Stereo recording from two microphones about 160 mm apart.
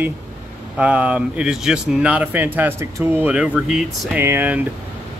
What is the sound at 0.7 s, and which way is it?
Speech, 5° right (ahead or behind).